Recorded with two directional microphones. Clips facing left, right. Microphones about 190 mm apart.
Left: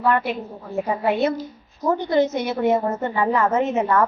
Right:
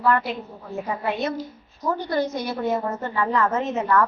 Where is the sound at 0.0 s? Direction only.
25° left (ahead or behind).